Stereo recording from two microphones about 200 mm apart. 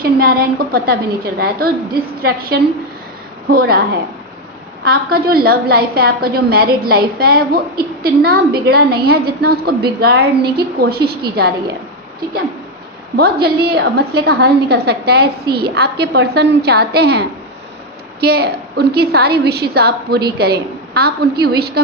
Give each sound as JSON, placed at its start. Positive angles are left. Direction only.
{"t": 0.0, "sound": "a woman's voice", "side_deg": -45}
{"t": 4.8, "sound": "a woman's voice", "side_deg": -50}
{"t": 13.1, "sound": "a woman's voice", "side_deg": -50}